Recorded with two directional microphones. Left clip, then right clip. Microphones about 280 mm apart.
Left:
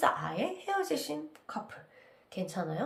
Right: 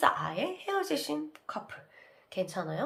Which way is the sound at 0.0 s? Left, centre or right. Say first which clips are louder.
Right 2 dB; centre.